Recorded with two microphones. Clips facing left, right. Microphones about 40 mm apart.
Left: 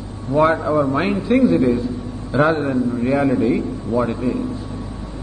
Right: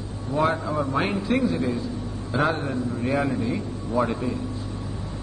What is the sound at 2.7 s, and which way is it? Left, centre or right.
A man's voice, centre.